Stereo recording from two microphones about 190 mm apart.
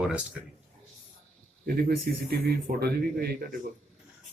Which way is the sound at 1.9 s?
55° right (ahead or behind).